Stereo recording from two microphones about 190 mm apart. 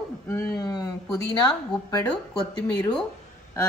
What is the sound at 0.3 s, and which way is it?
Speech, 20° left (ahead or behind).